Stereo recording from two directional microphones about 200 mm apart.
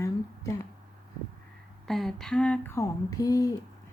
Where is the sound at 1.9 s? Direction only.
Centre (ahead or behind); by 3.5 s 15° left (ahead or behind).